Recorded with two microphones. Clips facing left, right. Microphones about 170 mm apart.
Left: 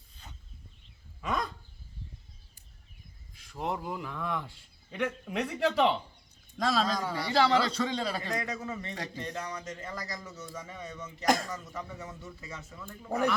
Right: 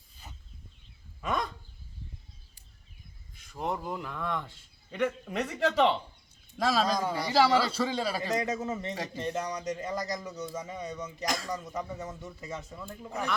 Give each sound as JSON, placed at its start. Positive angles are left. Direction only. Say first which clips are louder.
{"t": 1.2, "sound": "a sound", "louder": "right 1 dB", "side_deg": 0}
{"t": 3.3, "sound": "a man's voice", "louder": "right 1 dB", "side_deg": 0}
{"t": 6.8, "sound": "a man's voice", "louder": "right 3 dB", "side_deg": -15}
{"t": 7.3, "sound": "a man's voice", "louder": "right 1 dB", "side_deg": -5}
{"t": 8.3, "sound": "a man's voice", "louder": "right 4 dB", "side_deg": -20}